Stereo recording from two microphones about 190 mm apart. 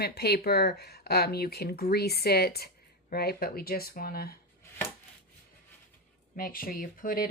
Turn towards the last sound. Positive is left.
turn(degrees=50)  # may be behind; listen again after turning